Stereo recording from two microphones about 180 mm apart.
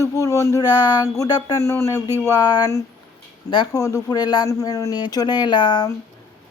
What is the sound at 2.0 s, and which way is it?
Speech, 15° right (ahead or behind).